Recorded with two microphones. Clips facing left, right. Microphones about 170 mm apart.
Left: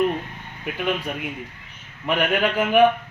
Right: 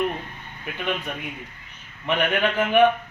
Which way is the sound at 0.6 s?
10° left (ahead or behind).